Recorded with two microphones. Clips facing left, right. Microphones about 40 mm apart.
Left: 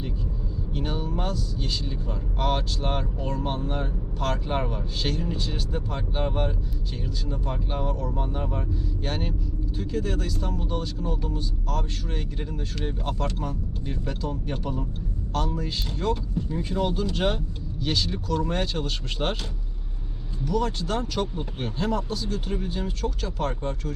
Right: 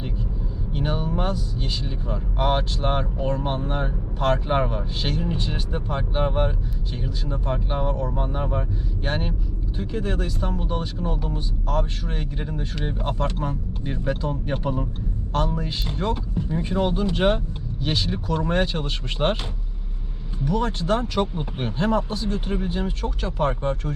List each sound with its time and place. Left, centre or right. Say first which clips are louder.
0.7 s speech: right 4 dB; right
20.4 s speech: right 2 dB; right